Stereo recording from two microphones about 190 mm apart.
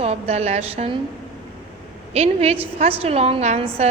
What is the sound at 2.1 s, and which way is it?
A woman's voice, 35° right (ahead or behind).